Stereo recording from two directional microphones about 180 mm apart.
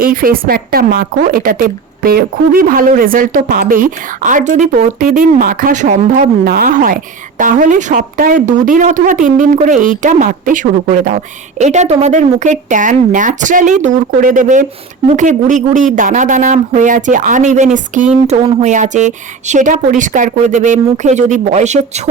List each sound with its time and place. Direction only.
0.0 s speech: 55° right (ahead or behind)